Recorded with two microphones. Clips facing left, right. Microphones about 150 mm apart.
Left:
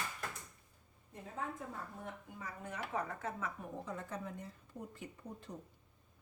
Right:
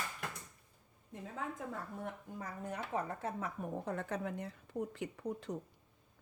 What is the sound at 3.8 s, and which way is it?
Speech, 65° right (ahead or behind).